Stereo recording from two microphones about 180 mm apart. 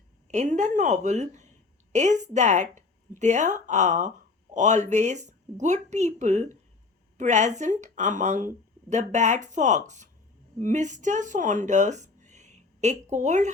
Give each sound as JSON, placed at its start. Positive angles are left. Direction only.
{"t": 0.3, "sound": "a woman's voice", "side_deg": -40}